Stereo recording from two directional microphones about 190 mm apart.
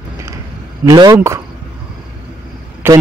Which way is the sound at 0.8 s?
20° right (ahead or behind).